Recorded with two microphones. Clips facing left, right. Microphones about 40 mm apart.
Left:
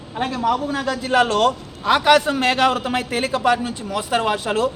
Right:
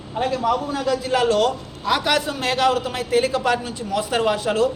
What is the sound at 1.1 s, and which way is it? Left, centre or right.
Speech, left.